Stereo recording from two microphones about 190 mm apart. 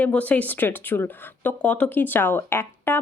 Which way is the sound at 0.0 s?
5° left (ahead or behind).